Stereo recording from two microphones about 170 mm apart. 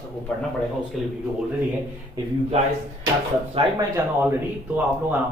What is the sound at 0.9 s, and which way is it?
Speech, centre (ahead or behind).